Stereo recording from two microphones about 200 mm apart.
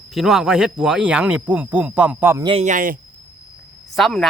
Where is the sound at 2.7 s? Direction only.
40° right (ahead or behind).